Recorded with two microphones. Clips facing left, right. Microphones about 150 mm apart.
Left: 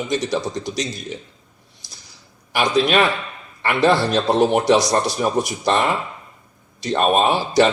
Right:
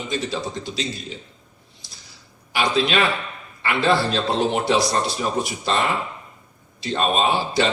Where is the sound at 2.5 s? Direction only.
55° left (ahead or behind).